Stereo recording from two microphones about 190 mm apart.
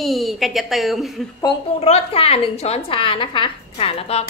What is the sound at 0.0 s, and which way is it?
A woman's voice, centre (ahead or behind).